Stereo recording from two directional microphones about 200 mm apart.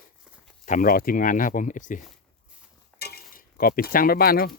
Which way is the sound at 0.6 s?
40° left (ahead or behind).